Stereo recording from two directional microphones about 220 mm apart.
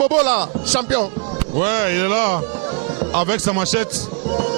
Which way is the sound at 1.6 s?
15° right (ahead or behind).